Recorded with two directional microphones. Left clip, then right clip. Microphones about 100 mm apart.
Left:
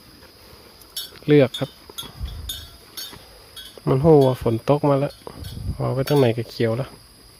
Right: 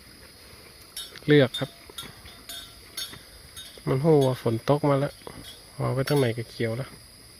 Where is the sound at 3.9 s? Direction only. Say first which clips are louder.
Left 6 dB; 25° left (ahead or behind).